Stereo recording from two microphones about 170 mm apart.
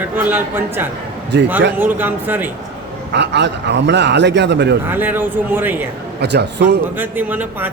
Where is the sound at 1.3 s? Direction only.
90° right.